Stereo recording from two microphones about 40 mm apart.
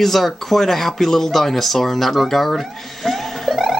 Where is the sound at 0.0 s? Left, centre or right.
Centre.